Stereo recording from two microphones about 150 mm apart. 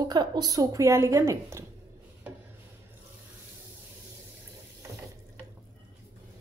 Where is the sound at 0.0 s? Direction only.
30° right (ahead or behind).